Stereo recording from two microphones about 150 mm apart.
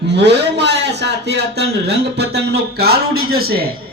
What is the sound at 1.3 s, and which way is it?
Speech, 90° right.